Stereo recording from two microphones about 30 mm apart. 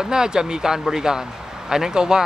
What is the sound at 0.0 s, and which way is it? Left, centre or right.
Speech, right.